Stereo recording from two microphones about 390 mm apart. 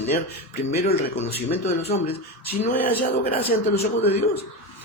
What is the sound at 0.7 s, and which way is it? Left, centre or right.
Speech, left.